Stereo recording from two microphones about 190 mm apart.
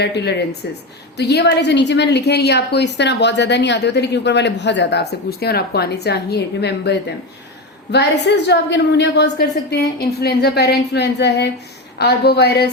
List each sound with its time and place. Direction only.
0.0 s a woman's voice: 65° left (ahead or behind)
8.4 s a woman's voice: 65° left (ahead or behind)